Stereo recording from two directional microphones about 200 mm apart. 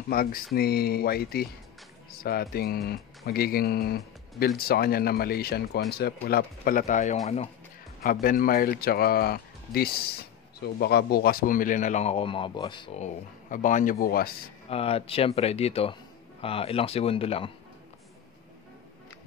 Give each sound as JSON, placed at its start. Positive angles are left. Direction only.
{"t": 0.1, "sound": "a man's voice", "side_deg": 45}
{"t": 13.0, "sound": "a man's voice", "side_deg": 40}
{"t": 14.7, "sound": "speech", "side_deg": 30}